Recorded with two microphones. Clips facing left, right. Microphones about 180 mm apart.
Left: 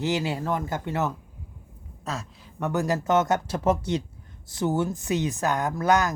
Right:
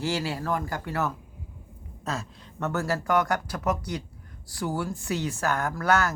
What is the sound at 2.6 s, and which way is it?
Speech, 15° left (ahead or behind).